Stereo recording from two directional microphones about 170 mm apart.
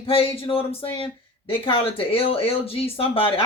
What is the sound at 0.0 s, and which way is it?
A man's voice, 35° left (ahead or behind).